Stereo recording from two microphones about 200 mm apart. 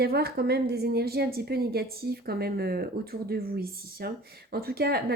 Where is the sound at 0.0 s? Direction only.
50° right (ahead or behind).